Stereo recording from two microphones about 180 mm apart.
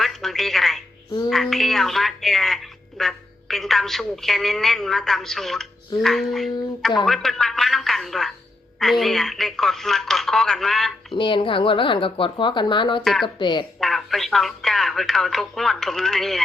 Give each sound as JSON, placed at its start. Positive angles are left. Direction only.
{"t": 0.0, "sound": "telephone", "side_deg": 0}
{"t": 1.3, "sound": "a woman's voice", "side_deg": 0}
{"t": 11.2, "sound": "a woman's voice", "side_deg": 30}
{"t": 13.7, "sound": "a woman's voice", "side_deg": 0}